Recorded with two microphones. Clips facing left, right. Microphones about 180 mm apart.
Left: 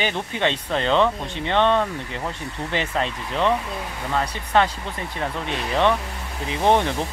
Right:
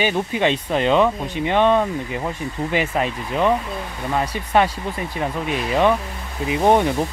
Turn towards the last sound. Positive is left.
turn(degrees=-10)  # may be behind; listen again after turning